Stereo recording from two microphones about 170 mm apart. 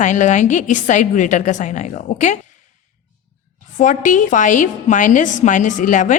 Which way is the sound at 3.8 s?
45° left (ahead or behind).